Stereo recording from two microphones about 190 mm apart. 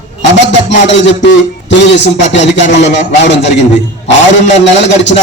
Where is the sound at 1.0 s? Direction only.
70° left (ahead or behind).